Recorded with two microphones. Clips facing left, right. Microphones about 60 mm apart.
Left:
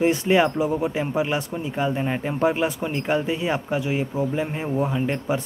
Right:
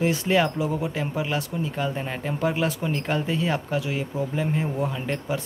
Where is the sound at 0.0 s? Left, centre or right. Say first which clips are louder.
Left 3 dB; left.